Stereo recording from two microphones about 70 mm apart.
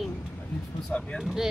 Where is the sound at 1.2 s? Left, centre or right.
Centre.